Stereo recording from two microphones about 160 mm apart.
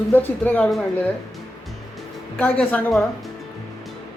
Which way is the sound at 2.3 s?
10° left (ahead or behind).